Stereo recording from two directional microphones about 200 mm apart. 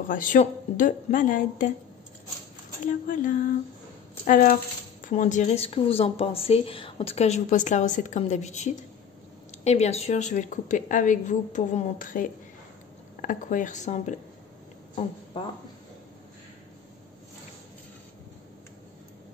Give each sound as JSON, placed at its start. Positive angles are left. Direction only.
{"t": 0.1, "sound": "a woman's voice", "side_deg": 40}
{"t": 2.8, "sound": "a woman's voice", "side_deg": 40}